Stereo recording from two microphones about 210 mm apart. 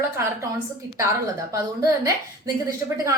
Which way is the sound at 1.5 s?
15° right (ahead or behind).